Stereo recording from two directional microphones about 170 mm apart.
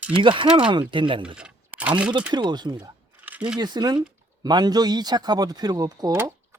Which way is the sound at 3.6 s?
25° right (ahead or behind).